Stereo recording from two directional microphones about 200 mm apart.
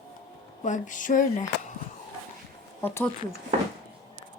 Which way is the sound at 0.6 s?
40° left (ahead or behind).